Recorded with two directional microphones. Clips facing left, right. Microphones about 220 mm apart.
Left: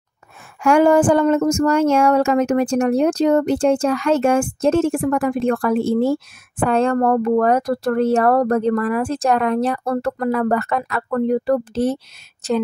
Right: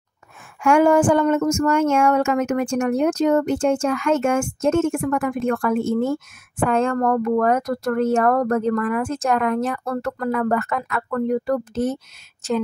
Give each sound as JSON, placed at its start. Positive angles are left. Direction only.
{"t": 0.6, "sound": "speech", "side_deg": 35}